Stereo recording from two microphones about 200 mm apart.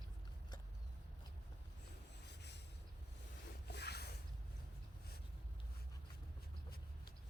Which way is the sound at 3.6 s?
55° left (ahead or behind).